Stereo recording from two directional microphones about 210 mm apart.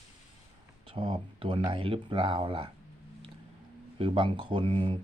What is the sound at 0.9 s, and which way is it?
Speech, 25° right (ahead or behind).